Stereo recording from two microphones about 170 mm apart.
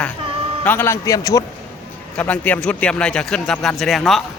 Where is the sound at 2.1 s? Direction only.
10° left (ahead or behind).